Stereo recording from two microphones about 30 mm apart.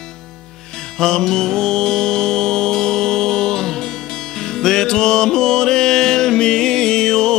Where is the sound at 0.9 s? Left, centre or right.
Centre.